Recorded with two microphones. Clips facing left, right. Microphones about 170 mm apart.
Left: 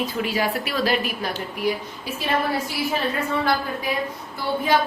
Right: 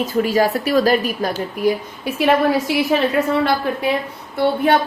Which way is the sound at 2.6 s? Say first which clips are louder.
Right 8 dB; 85° right.